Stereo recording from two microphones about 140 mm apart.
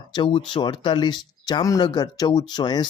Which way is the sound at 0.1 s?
35° left (ahead or behind).